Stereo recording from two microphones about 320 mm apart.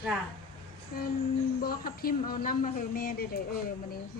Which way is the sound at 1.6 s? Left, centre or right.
Left.